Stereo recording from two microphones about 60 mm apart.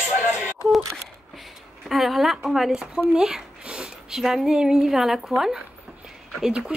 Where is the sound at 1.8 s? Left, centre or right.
Centre.